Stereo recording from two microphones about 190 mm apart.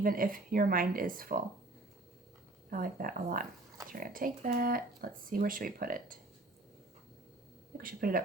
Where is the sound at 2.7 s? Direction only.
45° right (ahead or behind).